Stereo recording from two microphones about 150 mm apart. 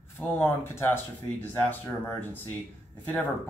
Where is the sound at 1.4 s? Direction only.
10° left (ahead or behind).